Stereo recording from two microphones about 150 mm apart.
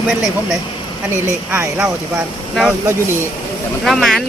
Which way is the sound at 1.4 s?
15° right (ahead or behind).